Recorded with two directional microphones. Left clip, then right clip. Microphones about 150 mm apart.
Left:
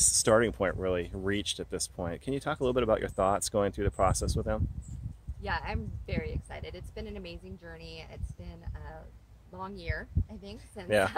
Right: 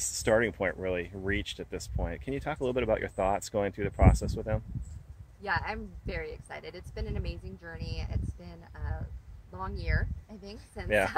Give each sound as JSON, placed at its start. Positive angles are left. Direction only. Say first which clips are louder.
{"t": 0.0, "sound": "speech", "louder": "left 2 dB", "side_deg": 40}
{"t": 5.4, "sound": "speech", "louder": "right 3 dB", "side_deg": -10}